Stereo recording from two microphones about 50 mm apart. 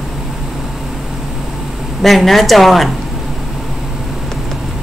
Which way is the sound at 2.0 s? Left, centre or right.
Centre.